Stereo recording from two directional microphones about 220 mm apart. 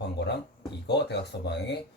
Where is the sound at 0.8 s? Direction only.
50° left (ahead or behind).